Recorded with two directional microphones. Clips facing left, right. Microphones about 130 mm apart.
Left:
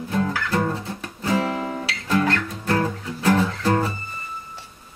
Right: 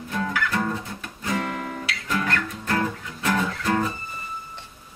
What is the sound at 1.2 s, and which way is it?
Guitar, 30° left (ahead or behind).